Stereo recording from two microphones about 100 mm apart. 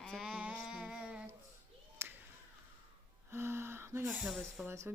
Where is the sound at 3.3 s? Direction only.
25° right (ahead or behind).